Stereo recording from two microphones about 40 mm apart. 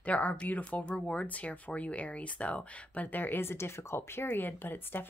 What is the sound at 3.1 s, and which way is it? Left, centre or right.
Speech, left.